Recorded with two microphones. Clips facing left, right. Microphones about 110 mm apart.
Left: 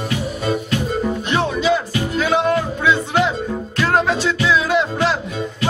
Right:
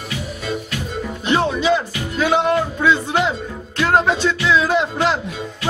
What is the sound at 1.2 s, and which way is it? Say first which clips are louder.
Music: right 3 dB; centre (ahead or behind).